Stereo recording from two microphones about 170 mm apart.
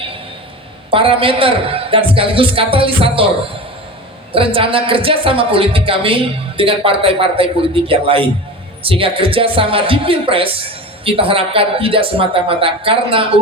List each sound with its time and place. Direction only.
0.9 s speech: 30° right (ahead or behind)
4.4 s speech: 30° right (ahead or behind)